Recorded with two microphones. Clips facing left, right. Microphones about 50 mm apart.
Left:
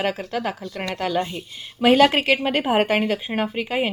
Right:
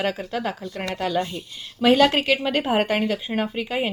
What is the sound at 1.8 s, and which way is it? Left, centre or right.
A woman's voice, centre.